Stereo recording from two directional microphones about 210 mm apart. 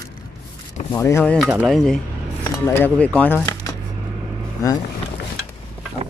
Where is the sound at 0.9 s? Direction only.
15° left (ahead or behind).